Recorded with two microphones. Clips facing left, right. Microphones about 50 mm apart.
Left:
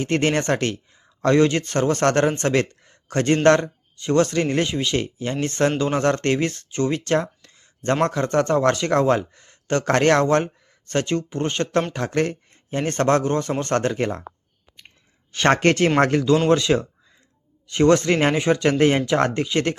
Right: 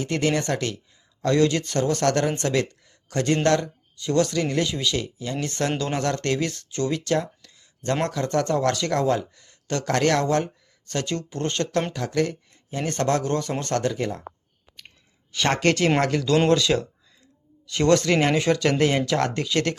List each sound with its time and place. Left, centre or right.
0.0 s speech: left
11.9 s speech: left
15.3 s speech: left
16.5 s speech: left